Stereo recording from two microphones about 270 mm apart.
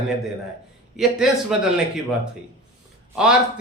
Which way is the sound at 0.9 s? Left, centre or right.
Centre.